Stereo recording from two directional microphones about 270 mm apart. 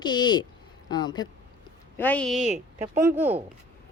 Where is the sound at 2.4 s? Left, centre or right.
Right.